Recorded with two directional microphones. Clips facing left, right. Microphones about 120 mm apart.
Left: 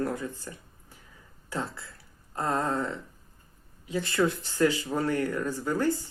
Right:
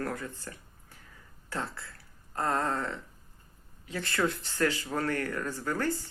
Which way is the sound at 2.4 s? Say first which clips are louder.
Left 2 dB; 10° left (ahead or behind).